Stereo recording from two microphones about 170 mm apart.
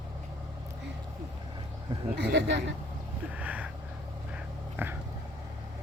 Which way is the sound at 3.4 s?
10° right (ahead or behind).